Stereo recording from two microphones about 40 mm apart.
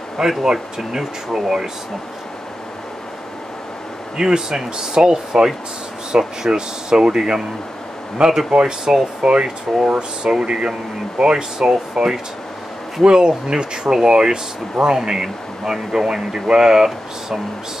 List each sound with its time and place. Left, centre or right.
0.2 s speech: centre
4.2 s speech: centre